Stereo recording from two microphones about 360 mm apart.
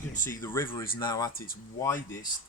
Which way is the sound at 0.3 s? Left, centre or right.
Centre.